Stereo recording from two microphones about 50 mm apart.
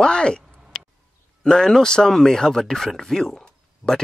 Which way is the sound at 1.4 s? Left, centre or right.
Centre.